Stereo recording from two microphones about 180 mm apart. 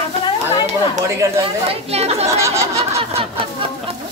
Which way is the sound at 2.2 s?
15° right (ahead or behind).